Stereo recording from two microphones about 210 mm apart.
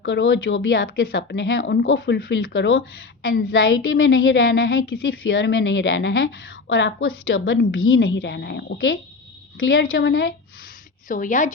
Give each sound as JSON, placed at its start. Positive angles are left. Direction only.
{"t": 0.0, "sound": "a woman's voice", "side_deg": 60}
{"t": 1.1, "sound": "a woman's voice", "side_deg": 60}
{"t": 2.5, "sound": "a woman's voice", "side_deg": 65}
{"t": 3.2, "sound": "a woman's voice", "side_deg": 45}
{"t": 3.5, "sound": "a woman's voice", "side_deg": 65}
{"t": 4.7, "sound": "a woman's voice", "side_deg": 70}
{"t": 8.0, "sound": "a woman's voice", "side_deg": 60}
{"t": 9.9, "sound": "a woman's voice", "side_deg": 55}
{"t": 11.1, "sound": "a woman's voice", "side_deg": 40}